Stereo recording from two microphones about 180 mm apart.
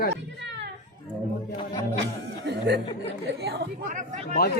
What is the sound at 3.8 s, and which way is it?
Speech, 45° right (ahead or behind).